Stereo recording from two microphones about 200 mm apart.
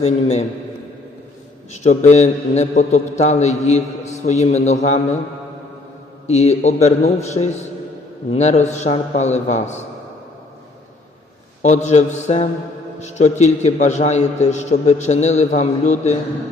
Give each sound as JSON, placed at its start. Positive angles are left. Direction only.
{"t": 0.0, "sound": "a man's voice", "side_deg": 35}
{"t": 1.8, "sound": "a man's voice", "side_deg": 35}
{"t": 6.2, "sound": "a man's voice", "side_deg": 35}
{"t": 11.6, "sound": "a man's voice", "side_deg": 35}